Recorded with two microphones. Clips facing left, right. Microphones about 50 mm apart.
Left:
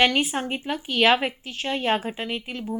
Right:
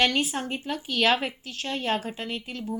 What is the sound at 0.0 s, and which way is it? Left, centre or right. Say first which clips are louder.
A woman's voice: left 3 dB; left.